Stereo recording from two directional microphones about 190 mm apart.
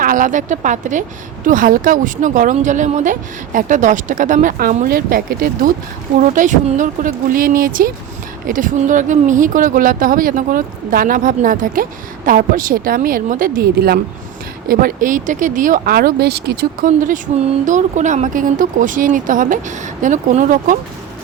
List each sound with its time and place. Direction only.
0.0 s a woman's voice: 45° right (ahead or behind)